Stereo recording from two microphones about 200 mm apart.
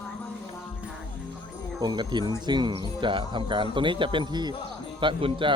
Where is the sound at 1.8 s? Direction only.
20° right (ahead or behind).